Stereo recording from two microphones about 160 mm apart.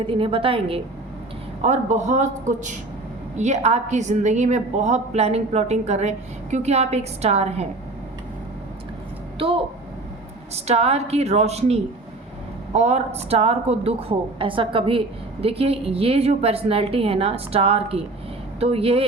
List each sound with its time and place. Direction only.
0.0 s a woman's voice: 35° right (ahead or behind)
1.6 s a woman's voice: 45° right (ahead or behind)
10.5 s a woman's voice: 40° right (ahead or behind)